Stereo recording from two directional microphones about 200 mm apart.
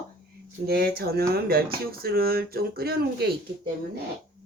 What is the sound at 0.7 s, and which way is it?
Speech, 50° right (ahead or behind).